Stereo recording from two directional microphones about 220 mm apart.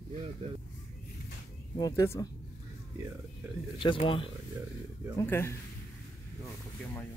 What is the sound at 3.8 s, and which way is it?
Speech, 20° left (ahead or behind).